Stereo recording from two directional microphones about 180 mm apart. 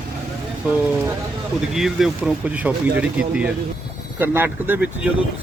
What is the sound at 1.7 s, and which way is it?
Speech, centre (ahead or behind).